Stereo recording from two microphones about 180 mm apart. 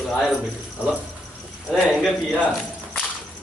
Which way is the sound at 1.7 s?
Centre (ahead or behind).